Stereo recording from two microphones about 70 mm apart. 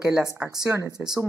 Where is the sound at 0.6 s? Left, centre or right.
Right.